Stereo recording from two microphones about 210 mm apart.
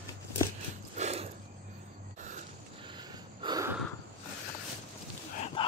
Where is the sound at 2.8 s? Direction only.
20° right (ahead or behind).